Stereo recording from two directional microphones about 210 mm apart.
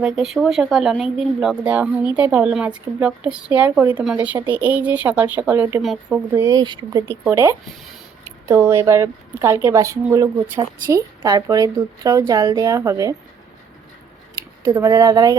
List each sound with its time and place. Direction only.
0.0 s a woman's voice: centre (ahead or behind)
6.3 s a woman's voice: 15° right (ahead or behind)
14.8 s speech: 20° right (ahead or behind)